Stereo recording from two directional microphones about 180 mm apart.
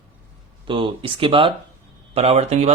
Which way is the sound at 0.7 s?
25° right (ahead or behind).